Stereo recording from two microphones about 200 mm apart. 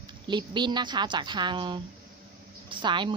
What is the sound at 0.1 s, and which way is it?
A woman's voice, 25° right (ahead or behind).